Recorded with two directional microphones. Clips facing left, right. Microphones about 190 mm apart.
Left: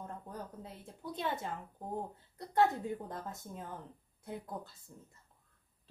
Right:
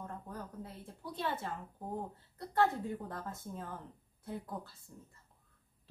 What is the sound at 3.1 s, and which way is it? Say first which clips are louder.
Speech: even; 20° left (ahead or behind).